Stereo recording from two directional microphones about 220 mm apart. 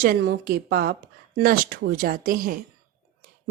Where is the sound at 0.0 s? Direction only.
45° right (ahead or behind).